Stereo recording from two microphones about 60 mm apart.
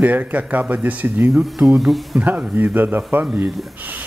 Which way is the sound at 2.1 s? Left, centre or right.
Right.